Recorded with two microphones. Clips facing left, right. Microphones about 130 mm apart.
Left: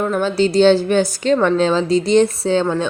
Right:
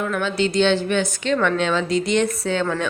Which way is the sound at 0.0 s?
35° left (ahead or behind).